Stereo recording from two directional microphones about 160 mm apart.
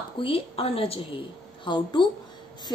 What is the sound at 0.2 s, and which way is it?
A woman's voice, 35° left (ahead or behind).